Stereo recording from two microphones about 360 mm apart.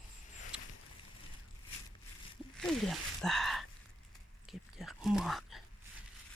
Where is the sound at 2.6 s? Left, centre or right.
Centre.